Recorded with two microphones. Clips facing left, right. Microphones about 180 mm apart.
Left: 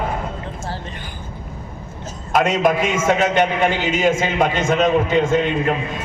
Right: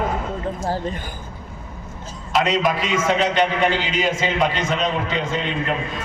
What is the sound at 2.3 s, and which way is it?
A man's voice, 50° left (ahead or behind).